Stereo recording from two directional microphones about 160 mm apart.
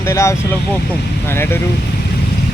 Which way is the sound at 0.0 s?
15° left (ahead or behind).